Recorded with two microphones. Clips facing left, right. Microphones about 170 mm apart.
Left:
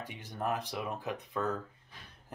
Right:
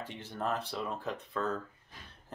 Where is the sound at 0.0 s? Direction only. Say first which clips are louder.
Even; 15° left (ahead or behind).